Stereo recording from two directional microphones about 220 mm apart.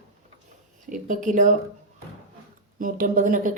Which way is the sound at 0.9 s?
35° right (ahead or behind).